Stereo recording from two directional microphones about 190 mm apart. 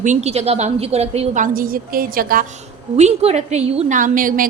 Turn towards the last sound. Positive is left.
turn(degrees=-45)  # may be behind; listen again after turning